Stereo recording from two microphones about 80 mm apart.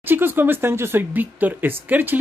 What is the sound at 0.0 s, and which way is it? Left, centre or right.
Speech, right.